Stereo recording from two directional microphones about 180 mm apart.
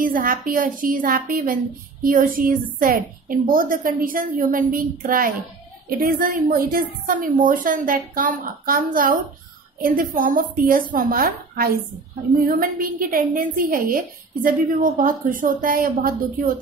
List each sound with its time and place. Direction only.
0.0 s a woman's voice: 50° right (ahead or behind)